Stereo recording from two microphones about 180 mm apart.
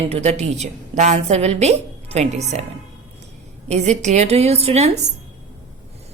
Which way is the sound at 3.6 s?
40° right (ahead or behind).